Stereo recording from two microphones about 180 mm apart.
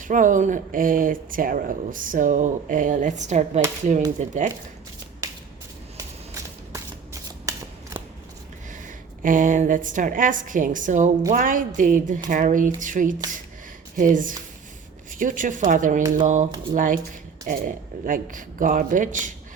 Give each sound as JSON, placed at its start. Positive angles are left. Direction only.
{"t": 0.0, "sound": "speech", "side_deg": -45}
{"t": 6.3, "sound": "shuffling cards", "side_deg": -15}
{"t": 9.2, "sound": "speech", "side_deg": -50}